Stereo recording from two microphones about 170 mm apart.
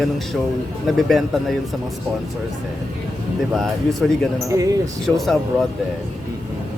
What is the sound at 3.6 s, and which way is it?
Speech, centre (ahead or behind).